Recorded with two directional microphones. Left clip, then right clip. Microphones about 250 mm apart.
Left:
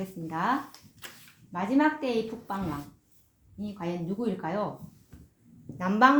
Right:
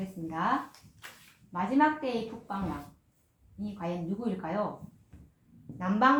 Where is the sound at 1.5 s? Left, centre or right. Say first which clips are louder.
Even; left.